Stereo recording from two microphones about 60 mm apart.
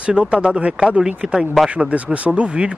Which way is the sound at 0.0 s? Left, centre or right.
Centre.